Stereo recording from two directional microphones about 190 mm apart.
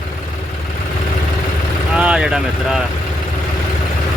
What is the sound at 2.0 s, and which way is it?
Speech, 5° right (ahead or behind).